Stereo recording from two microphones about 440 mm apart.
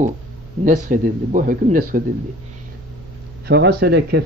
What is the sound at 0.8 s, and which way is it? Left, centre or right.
Speech, centre.